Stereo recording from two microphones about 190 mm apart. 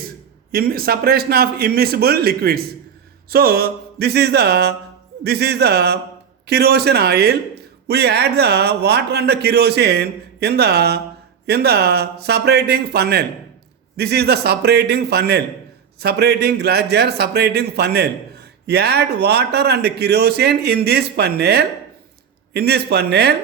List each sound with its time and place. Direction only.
0.5 s a man's voice: 50° right (ahead or behind)